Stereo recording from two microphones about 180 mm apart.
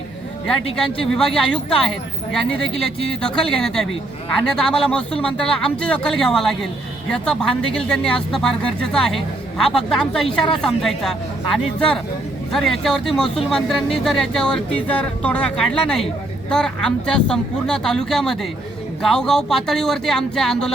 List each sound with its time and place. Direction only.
1.1 s speech: 5° left (ahead or behind)